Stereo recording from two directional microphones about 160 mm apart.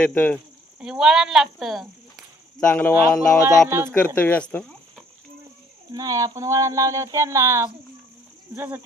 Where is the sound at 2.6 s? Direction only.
10° left (ahead or behind).